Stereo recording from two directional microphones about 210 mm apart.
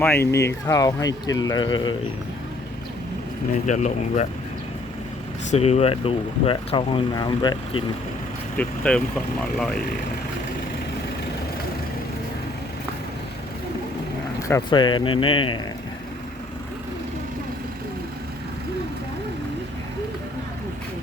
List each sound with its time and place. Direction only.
0.3 s speech: 15° left (ahead or behind)
3.7 s speech: 35° left (ahead or behind)
5.5 s speech: 30° left (ahead or behind)
8.5 s speech: 5° left (ahead or behind)
14.4 s speech: 20° left (ahead or behind)